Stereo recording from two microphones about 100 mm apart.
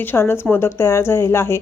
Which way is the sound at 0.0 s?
20° left (ahead or behind).